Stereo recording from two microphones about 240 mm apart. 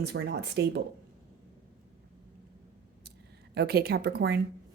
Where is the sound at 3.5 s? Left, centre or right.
Right.